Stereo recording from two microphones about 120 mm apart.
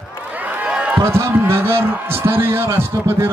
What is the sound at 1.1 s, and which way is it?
A man's voice, 20° right (ahead or behind).